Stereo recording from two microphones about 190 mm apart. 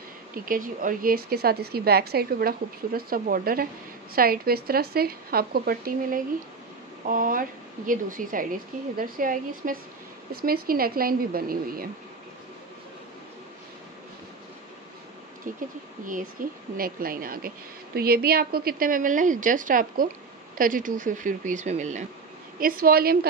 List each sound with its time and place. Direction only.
0.5 s a woman's voice: 45° right (ahead or behind)
15.5 s a woman's voice: 45° right (ahead or behind)